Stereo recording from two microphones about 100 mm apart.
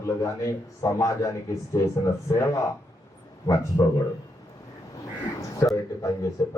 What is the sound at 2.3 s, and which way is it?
A man's voice, 30° left (ahead or behind).